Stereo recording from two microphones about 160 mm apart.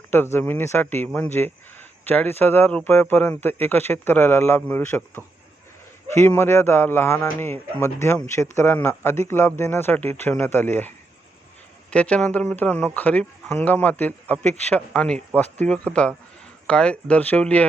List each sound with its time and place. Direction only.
0.1 s speech: 15° left (ahead or behind)